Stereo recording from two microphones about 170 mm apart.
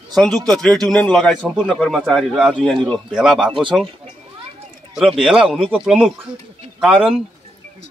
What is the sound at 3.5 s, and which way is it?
Speech, 30° right (ahead or behind).